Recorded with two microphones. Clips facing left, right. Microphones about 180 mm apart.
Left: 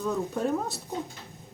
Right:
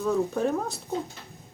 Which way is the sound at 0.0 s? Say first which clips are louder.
Right 3 dB; centre (ahead or behind).